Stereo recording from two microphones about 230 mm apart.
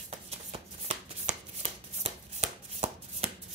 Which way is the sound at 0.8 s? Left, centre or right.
Right.